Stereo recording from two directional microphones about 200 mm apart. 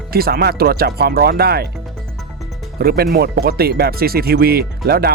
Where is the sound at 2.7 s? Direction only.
50° right (ahead or behind).